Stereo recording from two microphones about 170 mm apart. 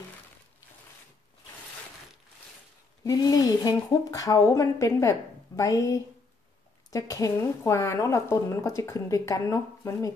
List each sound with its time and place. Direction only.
3.0 s speech: 20° left (ahead or behind)